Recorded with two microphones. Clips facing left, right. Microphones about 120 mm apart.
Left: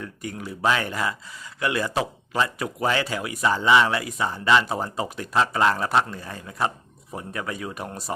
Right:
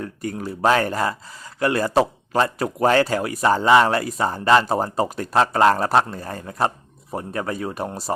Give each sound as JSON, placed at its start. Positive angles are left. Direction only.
{"t": 0.0, "sound": "speech", "side_deg": -40}